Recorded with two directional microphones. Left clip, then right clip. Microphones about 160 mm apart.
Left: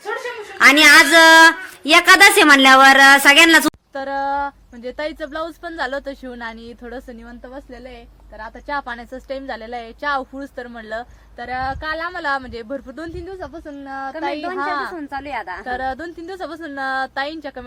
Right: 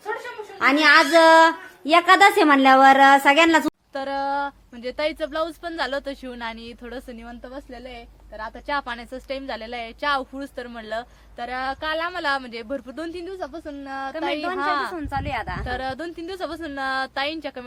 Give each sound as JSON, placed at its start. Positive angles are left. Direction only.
{"t": 0.6, "sound": "a woman's voice", "side_deg": 5}
{"t": 14.9, "sound": "speech", "side_deg": -20}
{"t": 15.6, "sound": "a woman's voice", "side_deg": 0}